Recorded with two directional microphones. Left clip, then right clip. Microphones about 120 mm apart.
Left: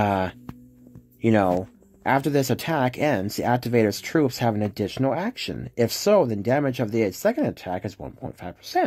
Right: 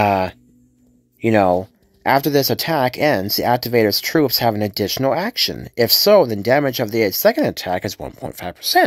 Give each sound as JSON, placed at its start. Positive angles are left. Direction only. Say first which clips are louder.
{"t": 0.0, "sound": "music", "louder": "right 7 dB", "side_deg": -10}
{"t": 1.2, "sound": "speech", "louder": "right 6 dB", "side_deg": -15}